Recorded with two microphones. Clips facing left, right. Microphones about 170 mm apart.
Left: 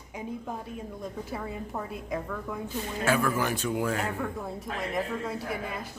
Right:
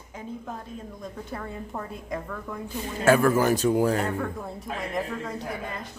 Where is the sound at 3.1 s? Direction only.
45° right (ahead or behind).